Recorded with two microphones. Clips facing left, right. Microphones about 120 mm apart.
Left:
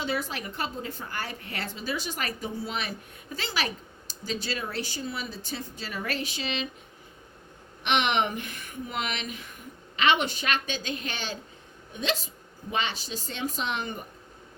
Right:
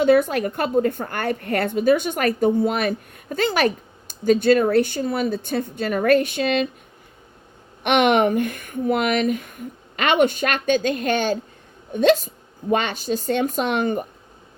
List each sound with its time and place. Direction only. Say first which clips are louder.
0.0 s a woman's voice: right 15 dB; 55° right (ahead or behind)
7.9 s a woman's voice: right 9 dB; 50° right (ahead or behind)